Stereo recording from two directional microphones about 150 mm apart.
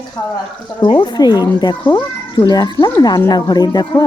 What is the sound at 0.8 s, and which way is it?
Speech, 30° left (ahead or behind).